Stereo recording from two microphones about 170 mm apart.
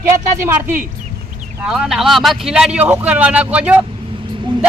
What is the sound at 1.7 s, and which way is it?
Speech, centre (ahead or behind).